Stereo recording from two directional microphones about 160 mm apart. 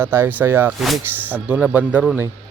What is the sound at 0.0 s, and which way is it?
Speech, 15° right (ahead or behind).